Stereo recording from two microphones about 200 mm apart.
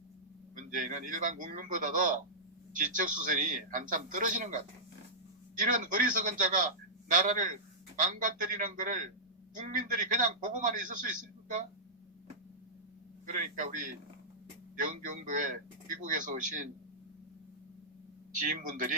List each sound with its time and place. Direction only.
0.7 s a man's voice: 40° right (ahead or behind)
13.2 s a man's voice: 40° right (ahead or behind)
18.3 s a man's voice: 40° right (ahead or behind)